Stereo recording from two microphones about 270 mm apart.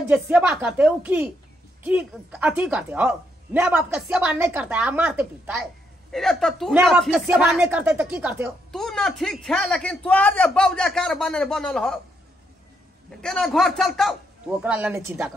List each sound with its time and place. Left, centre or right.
0.1 s speech: centre
13.2 s speech: centre